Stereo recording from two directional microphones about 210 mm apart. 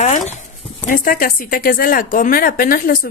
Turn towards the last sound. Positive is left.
turn(degrees=45)  # may be behind; listen again after turning